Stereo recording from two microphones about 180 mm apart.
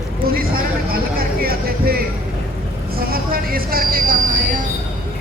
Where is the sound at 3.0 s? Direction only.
55° right (ahead or behind).